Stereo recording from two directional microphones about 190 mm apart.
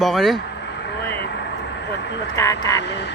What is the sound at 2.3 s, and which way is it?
Speech, 20° left (ahead or behind).